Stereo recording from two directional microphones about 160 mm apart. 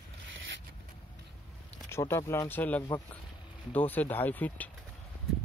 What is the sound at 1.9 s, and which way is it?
Speech, 15° left (ahead or behind).